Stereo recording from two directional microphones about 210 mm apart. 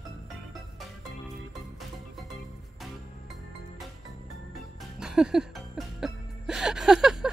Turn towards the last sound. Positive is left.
turn(degrees=0)  # may be behind; listen again after turning